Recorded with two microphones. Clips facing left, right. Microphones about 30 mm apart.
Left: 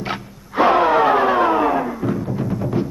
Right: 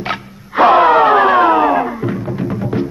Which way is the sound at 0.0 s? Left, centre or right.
Right.